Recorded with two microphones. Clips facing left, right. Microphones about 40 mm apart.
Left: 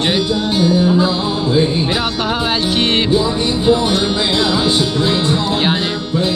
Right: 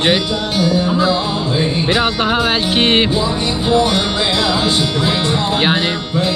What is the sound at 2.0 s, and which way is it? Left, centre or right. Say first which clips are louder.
Music: right 3 dB; right.